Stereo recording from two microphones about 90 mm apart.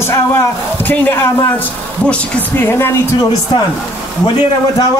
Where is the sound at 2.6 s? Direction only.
25° left (ahead or behind).